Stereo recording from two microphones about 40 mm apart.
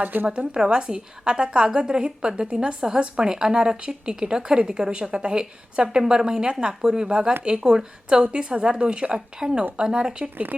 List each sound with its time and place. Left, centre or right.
0.0 s a woman's voice: right
0.6 s a woman's voice: centre